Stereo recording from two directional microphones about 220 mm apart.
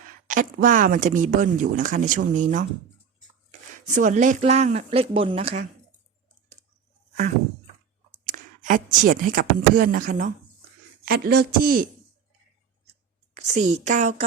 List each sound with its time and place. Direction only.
0.3 s speech: 35° right (ahead or behind)
3.9 s speech: 35° right (ahead or behind)
8.3 s speech: 35° right (ahead or behind)
13.3 s speech: 30° right (ahead or behind)